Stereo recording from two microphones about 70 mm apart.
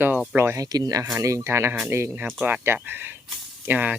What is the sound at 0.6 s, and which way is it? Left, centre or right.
Speech, right.